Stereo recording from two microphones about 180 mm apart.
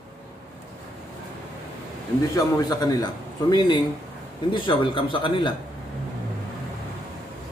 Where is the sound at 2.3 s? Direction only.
20° left (ahead or behind).